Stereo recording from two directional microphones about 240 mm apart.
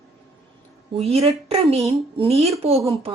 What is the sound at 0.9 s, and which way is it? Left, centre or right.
A woman's voice, right.